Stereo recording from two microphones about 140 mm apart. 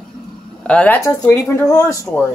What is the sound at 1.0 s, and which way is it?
Speech, 20° left (ahead or behind).